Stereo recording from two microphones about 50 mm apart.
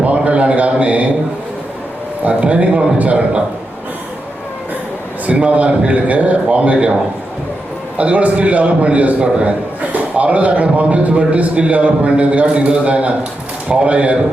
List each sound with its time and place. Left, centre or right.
0.0 s a sound: right
2.2 s a man's voice: right
5.2 s a man's voice: right
7.9 s a man's voice: right